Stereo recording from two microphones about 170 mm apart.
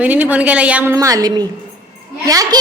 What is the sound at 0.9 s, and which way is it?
A woman's voice, 20° right (ahead or behind).